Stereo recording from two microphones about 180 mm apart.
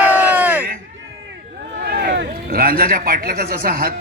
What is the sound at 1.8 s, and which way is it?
Speech, 60° right (ahead or behind).